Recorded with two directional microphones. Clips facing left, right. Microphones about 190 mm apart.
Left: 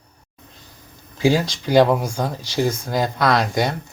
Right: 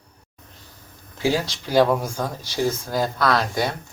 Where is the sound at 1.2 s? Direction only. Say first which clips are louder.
Left 4 dB; 15° left (ahead or behind).